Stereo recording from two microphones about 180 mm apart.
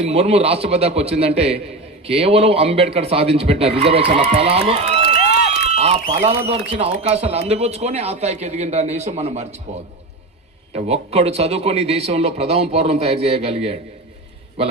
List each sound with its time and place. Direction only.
0.0 s speech: 35° right (ahead or behind)
5.0 s crowd: 65° left (ahead or behind)
5.7 s run: 35° right (ahead or behind)
6.2 s speech: 35° right (ahead or behind)
10.7 s speech: 40° right (ahead or behind)